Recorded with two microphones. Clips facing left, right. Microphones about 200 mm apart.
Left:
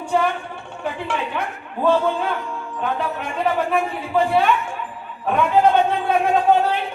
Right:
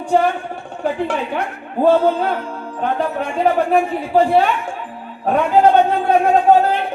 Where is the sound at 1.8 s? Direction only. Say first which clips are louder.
Right 5 dB; 35° right (ahead or behind).